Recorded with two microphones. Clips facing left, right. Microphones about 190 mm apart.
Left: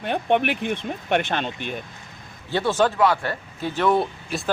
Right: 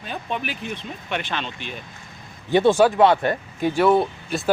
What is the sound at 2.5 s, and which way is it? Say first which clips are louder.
Speech: right 5 dB; 15° right (ahead or behind).